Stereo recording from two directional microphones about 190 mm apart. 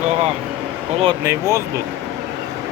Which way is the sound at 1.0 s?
15° right (ahead or behind).